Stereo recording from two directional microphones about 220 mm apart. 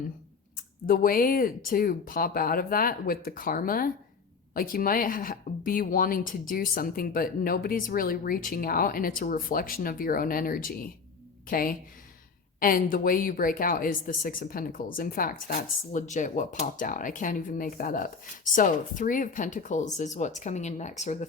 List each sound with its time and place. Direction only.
0.9 s a woman's voice: 40° left (ahead or behind)